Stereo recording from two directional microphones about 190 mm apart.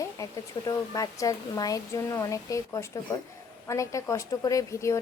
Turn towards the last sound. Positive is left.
turn(degrees=15)  # may be behind; listen again after turning